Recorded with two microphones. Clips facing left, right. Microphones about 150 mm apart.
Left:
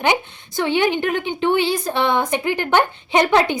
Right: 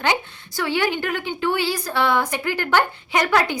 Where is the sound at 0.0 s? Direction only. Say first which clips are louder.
Left 3 dB; 20° left (ahead or behind).